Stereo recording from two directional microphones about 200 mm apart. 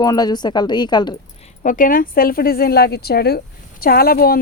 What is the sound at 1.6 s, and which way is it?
A woman's voice, 40° left (ahead or behind).